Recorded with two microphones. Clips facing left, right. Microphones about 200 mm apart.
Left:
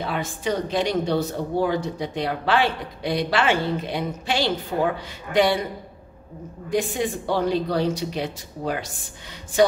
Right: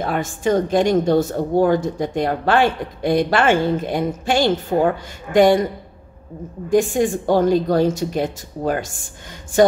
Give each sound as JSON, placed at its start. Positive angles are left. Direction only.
{"t": 0.0, "sound": "a woman's voice", "side_deg": -45}
{"t": 6.7, "sound": "a woman's voice", "side_deg": -45}